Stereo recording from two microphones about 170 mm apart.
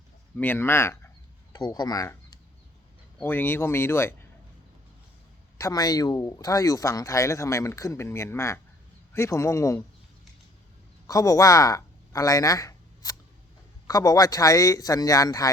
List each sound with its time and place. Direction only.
0.3 s speech: 10° left (ahead or behind)
5.5 s speech: 20° left (ahead or behind)
11.0 s a man's voice: 20° left (ahead or behind)